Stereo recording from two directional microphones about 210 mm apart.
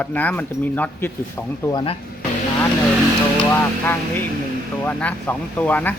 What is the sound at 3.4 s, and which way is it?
Speech, 10° left (ahead or behind).